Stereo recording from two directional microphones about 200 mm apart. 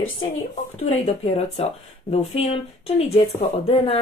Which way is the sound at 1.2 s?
30° left (ahead or behind).